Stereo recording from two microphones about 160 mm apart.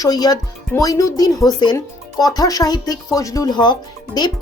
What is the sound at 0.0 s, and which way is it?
Speech, 25° left (ahead or behind).